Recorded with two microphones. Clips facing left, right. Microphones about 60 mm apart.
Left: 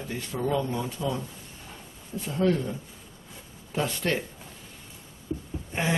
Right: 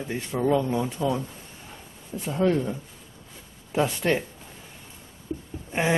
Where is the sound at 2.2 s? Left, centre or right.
Centre.